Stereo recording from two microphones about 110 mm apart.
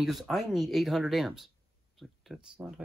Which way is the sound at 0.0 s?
Centre (ahead or behind).